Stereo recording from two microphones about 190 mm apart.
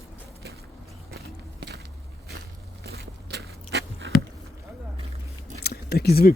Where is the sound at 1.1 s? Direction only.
60° right (ahead or behind).